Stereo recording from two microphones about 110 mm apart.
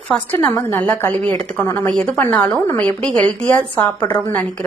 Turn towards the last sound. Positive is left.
turn(degrees=20)  # may be behind; listen again after turning